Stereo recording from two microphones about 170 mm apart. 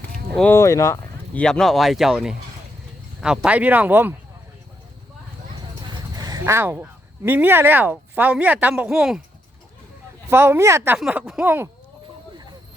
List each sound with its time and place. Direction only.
0.3 s speech: 10° left (ahead or behind); by 4.1 s 10° right (ahead or behind)
5.9 s a sound: 20° right (ahead or behind)
7.3 s speech: 10° right (ahead or behind)
10.2 s speech: 15° right (ahead or behind)